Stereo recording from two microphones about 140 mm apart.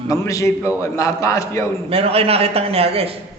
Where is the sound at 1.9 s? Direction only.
45° right (ahead or behind).